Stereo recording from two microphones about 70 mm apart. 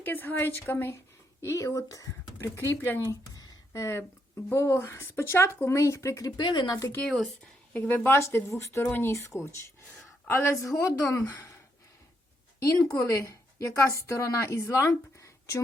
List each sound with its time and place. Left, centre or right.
0.0 s speech: left
1.4 s speech: left
2.6 s speech: left
3.3 s a sound: left
4.5 s speech: left
6.3 s speech: left
7.4 s a woman's voice: left
8.1 s speech: left
8.8 s speech: left
9.3 s a woman's voice: left
11.0 s speech: left
12.5 s a woman's voice: left